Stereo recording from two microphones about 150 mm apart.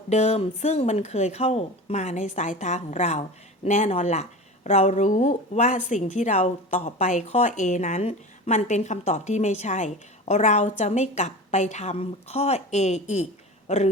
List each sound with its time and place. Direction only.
0.1 s a man's voice: 45° left (ahead or behind)